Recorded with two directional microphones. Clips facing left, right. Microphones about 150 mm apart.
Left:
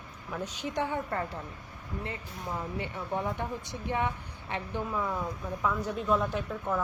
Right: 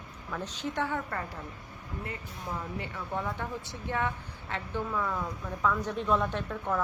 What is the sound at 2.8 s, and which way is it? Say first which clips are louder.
Speech: left 2 dB; 20° left (ahead or behind).